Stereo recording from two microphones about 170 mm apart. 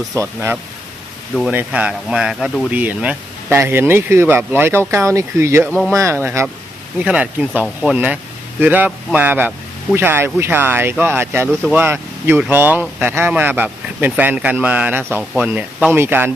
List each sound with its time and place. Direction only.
0.1 s speech: 15° right (ahead or behind)
5.6 s speech: 5° left (ahead or behind)
5.9 s speech: 15° right (ahead or behind)